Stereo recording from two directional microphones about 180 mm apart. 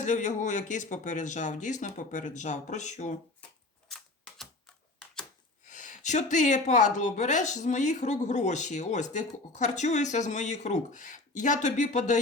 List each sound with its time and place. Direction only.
0.0 s speech: 45° left (ahead or behind)
3.8 s typewriter: centre (ahead or behind)
5.6 s speech: 45° left (ahead or behind)